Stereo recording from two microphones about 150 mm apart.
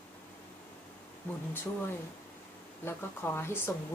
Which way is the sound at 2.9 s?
15° left (ahead or behind).